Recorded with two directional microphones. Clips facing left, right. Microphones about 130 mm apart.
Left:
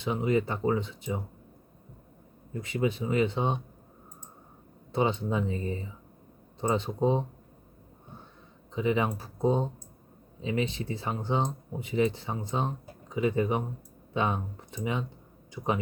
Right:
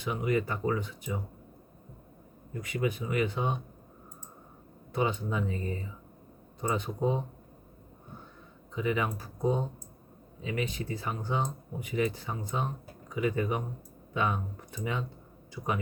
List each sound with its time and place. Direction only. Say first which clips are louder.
0.0 s speech: left 3 dB; 25° left (ahead or behind)
2.5 s speech: left 2 dB; 25° left (ahead or behind)
4.9 s speech: left 3 dB; 25° left (ahead or behind)
8.7 s speech: left 3 dB; 25° left (ahead or behind)